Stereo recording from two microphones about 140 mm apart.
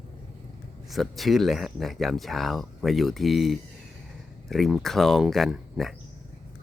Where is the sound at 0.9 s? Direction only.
Centre (ahead or behind).